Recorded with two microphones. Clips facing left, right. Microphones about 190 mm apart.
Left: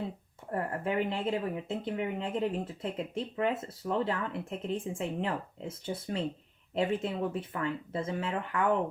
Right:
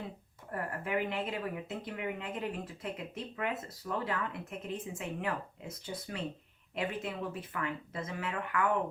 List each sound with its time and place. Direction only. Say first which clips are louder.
0.5 s speech: left 4 dB; 30° left (ahead or behind)